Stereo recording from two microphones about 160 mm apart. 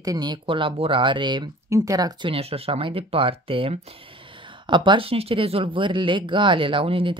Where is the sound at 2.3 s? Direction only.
40° right (ahead or behind).